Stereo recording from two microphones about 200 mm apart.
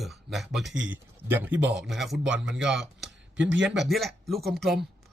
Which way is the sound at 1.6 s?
60° right (ahead or behind).